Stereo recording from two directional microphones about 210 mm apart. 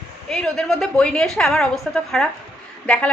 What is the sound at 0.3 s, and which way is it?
A woman's voice, 5° left (ahead or behind).